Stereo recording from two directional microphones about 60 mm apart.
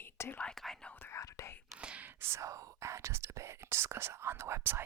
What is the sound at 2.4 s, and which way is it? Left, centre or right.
Speech, right.